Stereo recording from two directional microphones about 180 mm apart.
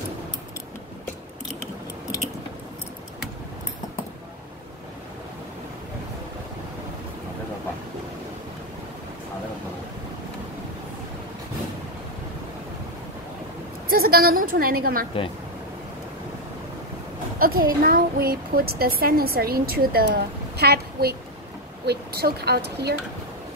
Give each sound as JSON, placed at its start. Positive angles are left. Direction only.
{"t": 13.8, "sound": "a woman's voice", "side_deg": -55}
{"t": 17.4, "sound": "a woman's voice", "side_deg": -55}